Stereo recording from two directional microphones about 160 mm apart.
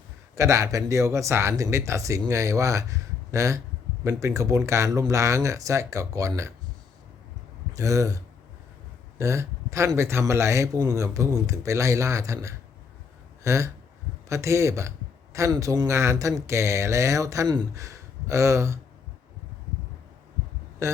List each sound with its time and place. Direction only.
0.3 s a man's voice: 20° right (ahead or behind)
7.7 s a man's voice: 20° right (ahead or behind)
20.8 s hum: 15° right (ahead or behind)